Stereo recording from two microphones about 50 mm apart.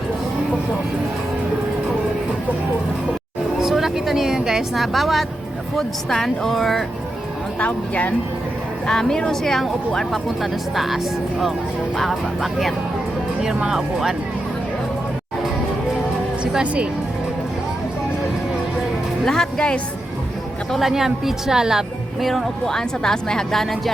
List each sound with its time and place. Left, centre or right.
3.6 s speech: centre
7.6 s speech: left
8.9 s a woman's voice: centre
13.7 s a woman's voice: centre
19.2 s a woman's voice: centre
20.7 s a woman's voice: centre
22.2 s a woman's voice: centre